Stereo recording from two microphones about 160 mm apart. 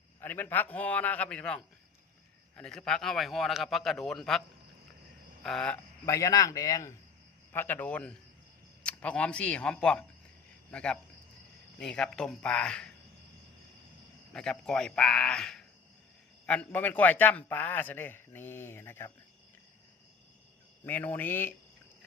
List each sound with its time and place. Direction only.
0.2 s a man's voice: 10° left (ahead or behind)
2.6 s a man's voice: 5° left (ahead or behind)
5.4 s a sound: 5° left (ahead or behind)
6.1 s a man's voice: 20° left (ahead or behind)
14.3 s a man's voice: 5° left (ahead or behind)
20.8 s a man's voice: 10° left (ahead or behind)